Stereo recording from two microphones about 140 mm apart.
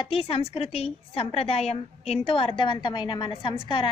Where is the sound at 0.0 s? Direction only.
45° left (ahead or behind).